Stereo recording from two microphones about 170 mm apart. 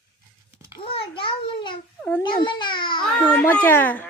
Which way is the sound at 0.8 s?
35° left (ahead or behind).